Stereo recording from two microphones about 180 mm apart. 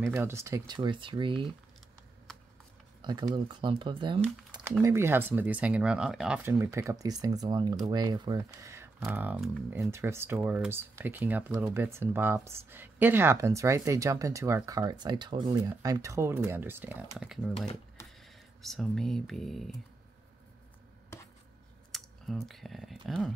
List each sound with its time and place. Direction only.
0.0 s speech: 15° right (ahead or behind)
0.7 s speech: 25° right (ahead or behind)
3.0 s speech: 25° right (ahead or behind)
4.8 s speech: 15° right (ahead or behind)
21.1 s a sound: 15° left (ahead or behind)
21.9 s speech: centre (ahead or behind)